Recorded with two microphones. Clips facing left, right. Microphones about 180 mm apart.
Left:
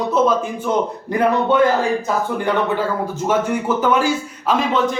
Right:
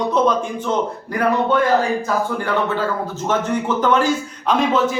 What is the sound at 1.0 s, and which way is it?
Speech, 20° left (ahead or behind).